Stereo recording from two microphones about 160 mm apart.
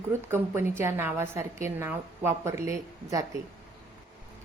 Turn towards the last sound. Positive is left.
turn(degrees=-20)  # may be behind; listen again after turning